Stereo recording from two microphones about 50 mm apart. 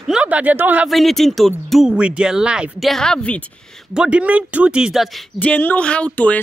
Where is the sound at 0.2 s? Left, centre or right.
Right.